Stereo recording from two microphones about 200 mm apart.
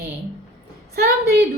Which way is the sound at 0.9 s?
55° right (ahead or behind).